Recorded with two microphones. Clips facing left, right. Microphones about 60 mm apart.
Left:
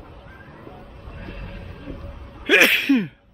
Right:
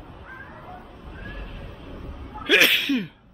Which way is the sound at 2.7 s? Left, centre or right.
Left.